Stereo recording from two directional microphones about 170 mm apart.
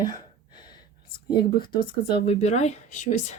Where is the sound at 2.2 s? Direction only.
40° left (ahead or behind).